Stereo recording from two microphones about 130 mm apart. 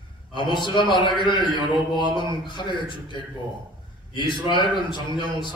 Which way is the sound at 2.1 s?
35° left (ahead or behind).